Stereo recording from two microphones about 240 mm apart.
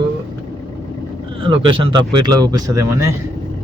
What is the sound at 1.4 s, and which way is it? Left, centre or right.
Speech, right.